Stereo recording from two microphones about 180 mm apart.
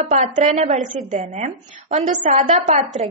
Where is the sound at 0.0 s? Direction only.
45° right (ahead or behind).